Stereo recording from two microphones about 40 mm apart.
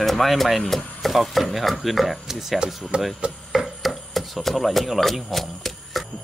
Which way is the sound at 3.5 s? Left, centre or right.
Centre.